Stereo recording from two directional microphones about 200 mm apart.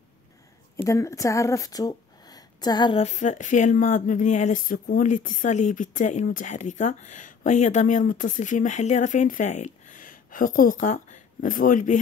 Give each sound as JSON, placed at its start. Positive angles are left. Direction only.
{"t": 0.8, "sound": "a woman's voice", "side_deg": 15}